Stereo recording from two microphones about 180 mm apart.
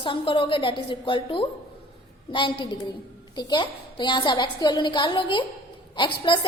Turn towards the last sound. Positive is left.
turn(degrees=25)  # may be behind; listen again after turning